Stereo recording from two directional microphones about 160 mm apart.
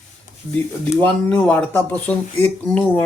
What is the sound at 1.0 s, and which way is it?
Speech, 10° left (ahead or behind).